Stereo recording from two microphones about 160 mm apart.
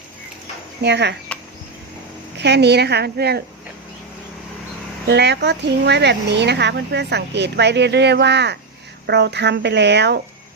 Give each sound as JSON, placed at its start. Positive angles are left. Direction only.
{"t": 0.8, "sound": "speech", "side_deg": -90}
{"t": 2.4, "sound": "speech", "side_deg": -90}
{"t": 5.0, "sound": "speech", "side_deg": -90}